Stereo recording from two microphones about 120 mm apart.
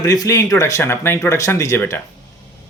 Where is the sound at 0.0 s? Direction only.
30° left (ahead or behind).